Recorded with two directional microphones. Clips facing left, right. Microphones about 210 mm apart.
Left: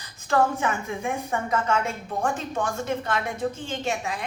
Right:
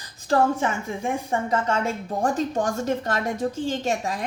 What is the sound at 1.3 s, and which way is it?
A woman's voice, 30° right (ahead or behind).